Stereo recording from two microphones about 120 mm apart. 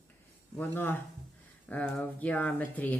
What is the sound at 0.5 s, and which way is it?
Speech, 15° left (ahead or behind).